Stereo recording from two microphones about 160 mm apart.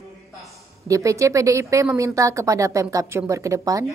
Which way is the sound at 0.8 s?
20° right (ahead or behind).